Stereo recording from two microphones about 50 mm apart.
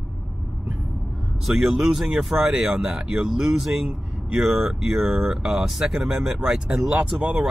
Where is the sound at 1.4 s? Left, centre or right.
Centre.